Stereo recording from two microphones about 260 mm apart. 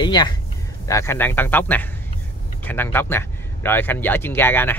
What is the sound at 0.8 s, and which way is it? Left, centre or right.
Speech, centre.